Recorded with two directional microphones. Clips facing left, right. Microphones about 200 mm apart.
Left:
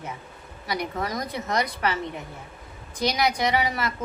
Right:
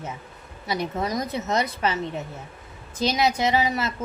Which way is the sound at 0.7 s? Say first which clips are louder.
Right 2 dB; 25° right (ahead or behind).